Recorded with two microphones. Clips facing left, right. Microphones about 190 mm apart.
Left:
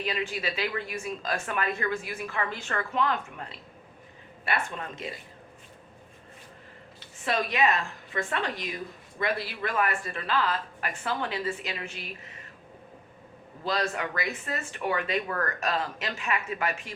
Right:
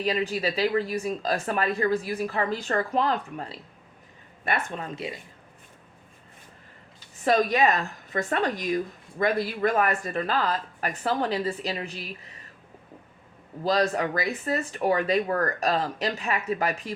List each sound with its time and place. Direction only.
0.0 s speech: 40° right (ahead or behind)
7.3 s speech: 40° right (ahead or behind)
13.7 s speech: 35° right (ahead or behind)